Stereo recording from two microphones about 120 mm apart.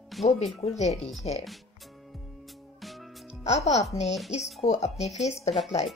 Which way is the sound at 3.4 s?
65° left (ahead or behind).